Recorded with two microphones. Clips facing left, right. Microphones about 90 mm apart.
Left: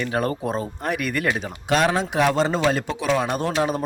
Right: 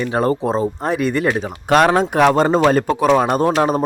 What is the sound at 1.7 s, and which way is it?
A man's voice, 50° right (ahead or behind).